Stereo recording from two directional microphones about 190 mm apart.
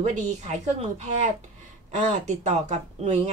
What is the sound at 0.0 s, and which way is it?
A woman's voice, 35° right (ahead or behind).